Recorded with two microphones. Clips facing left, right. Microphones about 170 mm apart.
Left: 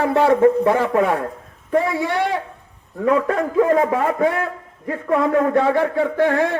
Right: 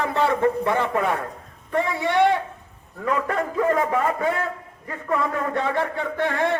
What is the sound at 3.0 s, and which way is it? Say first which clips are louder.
A man's voice: left 6 dB; 55° left (ahead or behind).